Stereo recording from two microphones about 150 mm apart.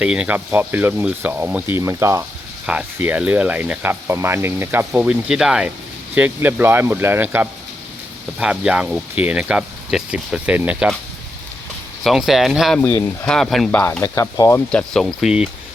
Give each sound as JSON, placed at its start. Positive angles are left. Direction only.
{"t": 0.0, "sound": "speech", "side_deg": -10}
{"t": 12.0, "sound": "speech", "side_deg": 0}
{"t": 12.8, "sound": "speech", "side_deg": 15}
{"t": 13.2, "sound": "speech", "side_deg": 5}
{"t": 14.0, "sound": "speech", "side_deg": 20}
{"t": 14.7, "sound": "speech", "side_deg": 5}